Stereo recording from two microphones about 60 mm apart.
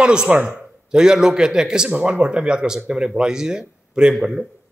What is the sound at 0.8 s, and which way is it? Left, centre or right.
A man's voice, centre.